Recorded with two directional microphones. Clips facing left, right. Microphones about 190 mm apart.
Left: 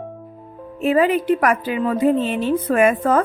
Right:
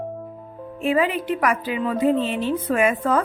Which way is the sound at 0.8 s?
45° left (ahead or behind).